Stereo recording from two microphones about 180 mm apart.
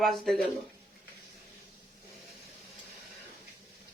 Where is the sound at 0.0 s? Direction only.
Centre (ahead or behind).